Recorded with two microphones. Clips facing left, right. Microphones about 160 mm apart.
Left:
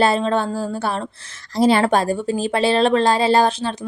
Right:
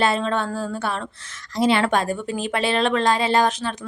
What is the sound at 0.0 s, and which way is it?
A woman's voice, 35° left (ahead or behind).